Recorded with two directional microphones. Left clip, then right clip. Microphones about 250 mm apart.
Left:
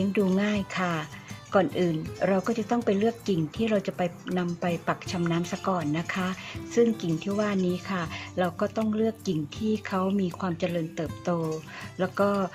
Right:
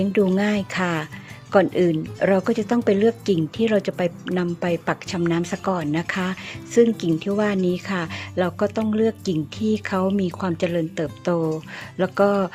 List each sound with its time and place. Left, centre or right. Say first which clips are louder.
0.0 s speech: right 6 dB; right